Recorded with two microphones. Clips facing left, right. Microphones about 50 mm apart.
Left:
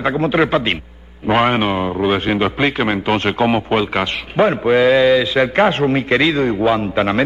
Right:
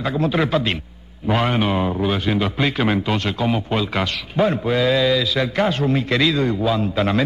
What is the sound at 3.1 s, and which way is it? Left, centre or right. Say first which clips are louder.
A man's voice: left 5 dB; left.